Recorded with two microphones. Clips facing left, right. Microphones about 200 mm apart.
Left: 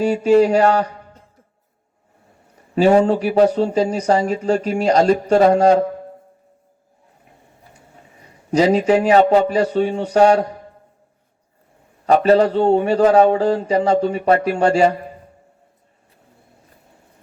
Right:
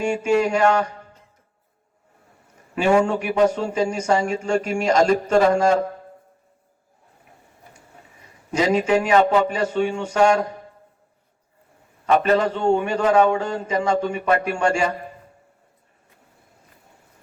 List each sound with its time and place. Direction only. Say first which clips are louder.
0.0 s a man's voice: left 6 dB; 35° left (ahead or behind)
2.7 s a man's voice: left 5 dB; 35° left (ahead or behind)
8.2 s a man's voice: left 6 dB; 35° left (ahead or behind)
12.0 s a man's voice: left 5 dB; 35° left (ahead or behind)